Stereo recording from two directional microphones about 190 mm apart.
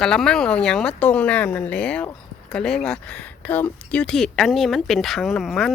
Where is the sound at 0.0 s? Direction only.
5° left (ahead or behind).